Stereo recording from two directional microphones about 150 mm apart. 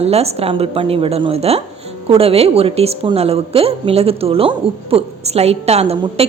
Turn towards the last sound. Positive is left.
turn(degrees=-45)  # may be behind; listen again after turning